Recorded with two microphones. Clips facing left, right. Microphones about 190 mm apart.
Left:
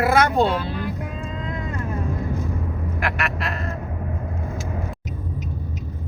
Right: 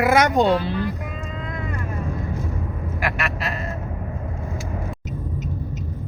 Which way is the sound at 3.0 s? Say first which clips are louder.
Right 1 dB; centre (ahead or behind).